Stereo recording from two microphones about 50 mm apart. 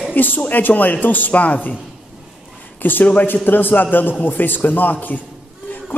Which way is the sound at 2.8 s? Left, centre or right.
Left.